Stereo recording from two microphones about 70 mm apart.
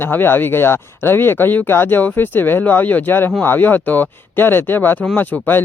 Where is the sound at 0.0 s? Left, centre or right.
Left.